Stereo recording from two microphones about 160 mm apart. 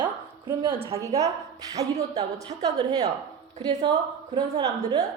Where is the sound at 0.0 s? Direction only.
30° right (ahead or behind).